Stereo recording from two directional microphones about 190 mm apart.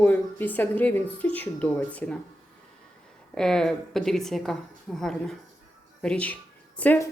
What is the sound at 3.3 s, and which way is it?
Speech, 5° left (ahead or behind).